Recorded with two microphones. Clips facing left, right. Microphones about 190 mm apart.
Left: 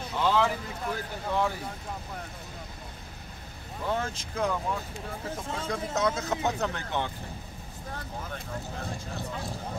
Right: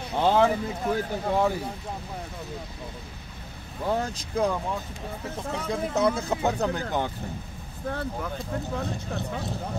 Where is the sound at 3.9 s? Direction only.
35° right (ahead or behind).